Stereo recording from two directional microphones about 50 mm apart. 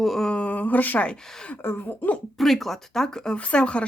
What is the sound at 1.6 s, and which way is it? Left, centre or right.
Speech, left.